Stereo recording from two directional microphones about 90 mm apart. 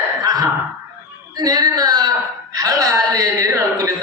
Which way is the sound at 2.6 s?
40° right (ahead or behind).